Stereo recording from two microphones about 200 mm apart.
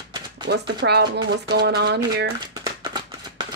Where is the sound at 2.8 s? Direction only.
25° right (ahead or behind).